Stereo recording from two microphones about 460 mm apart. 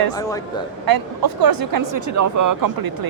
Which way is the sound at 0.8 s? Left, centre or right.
Right.